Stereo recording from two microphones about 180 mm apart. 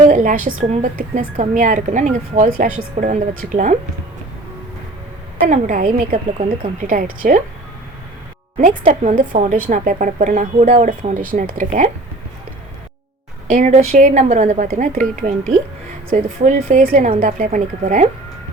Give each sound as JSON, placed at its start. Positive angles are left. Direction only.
{"t": 0.1, "sound": "a sound", "side_deg": -45}
{"t": 0.4, "sound": "speech", "side_deg": -45}
{"t": 5.5, "sound": "speech", "side_deg": -45}
{"t": 8.9, "sound": "speech", "side_deg": -45}
{"t": 13.5, "sound": "speech", "side_deg": -45}